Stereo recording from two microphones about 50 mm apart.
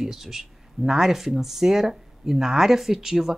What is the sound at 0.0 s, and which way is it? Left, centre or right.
Speech, centre.